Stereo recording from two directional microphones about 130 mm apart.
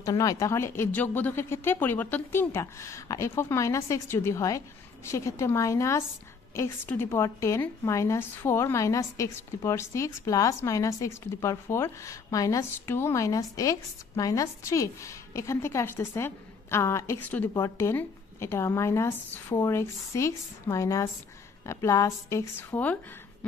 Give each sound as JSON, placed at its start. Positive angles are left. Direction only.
{"t": 0.0, "sound": "a woman's voice", "side_deg": 25}